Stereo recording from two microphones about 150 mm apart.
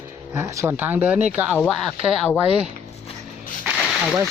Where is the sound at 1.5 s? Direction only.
5° left (ahead or behind).